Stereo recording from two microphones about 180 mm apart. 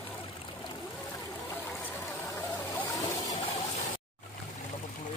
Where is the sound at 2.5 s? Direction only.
15° left (ahead or behind).